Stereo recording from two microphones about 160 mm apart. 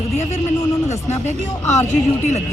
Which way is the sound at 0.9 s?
45° left (ahead or behind).